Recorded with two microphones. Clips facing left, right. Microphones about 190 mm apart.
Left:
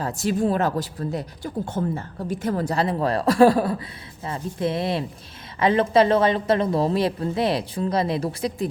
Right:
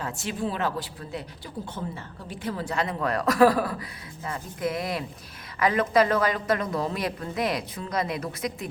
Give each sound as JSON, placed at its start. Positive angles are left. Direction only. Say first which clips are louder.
{"t": 0.0, "sound": "a woman's voice", "louder": "left 7 dB", "side_deg": 40}